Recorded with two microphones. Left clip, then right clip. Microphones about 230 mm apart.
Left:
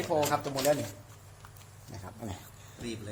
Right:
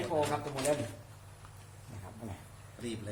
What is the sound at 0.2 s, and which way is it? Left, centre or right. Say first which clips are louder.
Speech: left 4 dB; left.